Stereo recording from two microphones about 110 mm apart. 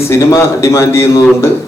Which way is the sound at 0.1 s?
25° left (ahead or behind).